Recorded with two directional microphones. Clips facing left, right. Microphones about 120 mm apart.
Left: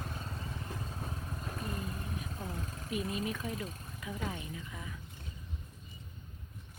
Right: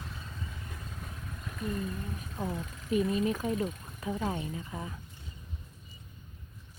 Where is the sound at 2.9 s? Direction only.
35° right (ahead or behind).